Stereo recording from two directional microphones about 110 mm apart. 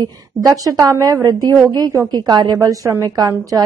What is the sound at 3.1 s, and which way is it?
Speech, 35° right (ahead or behind).